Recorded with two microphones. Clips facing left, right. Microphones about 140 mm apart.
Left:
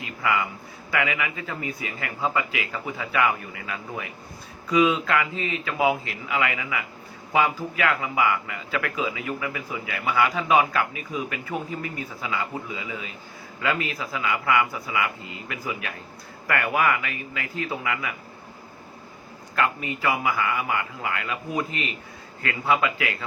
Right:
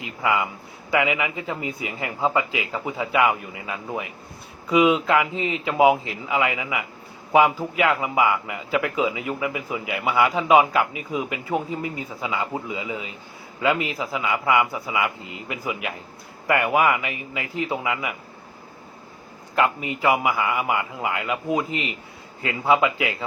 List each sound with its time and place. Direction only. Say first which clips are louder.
0.0 s a man's voice: right 2 dB; 20° right (ahead or behind)
19.5 s a man's voice: right 3 dB; 20° right (ahead or behind)